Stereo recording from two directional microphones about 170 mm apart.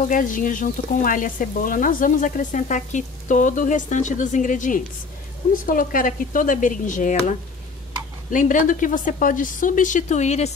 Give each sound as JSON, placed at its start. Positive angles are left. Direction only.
{"t": 0.1, "sound": "frying", "side_deg": 50}
{"t": 8.3, "sound": "frying", "side_deg": 50}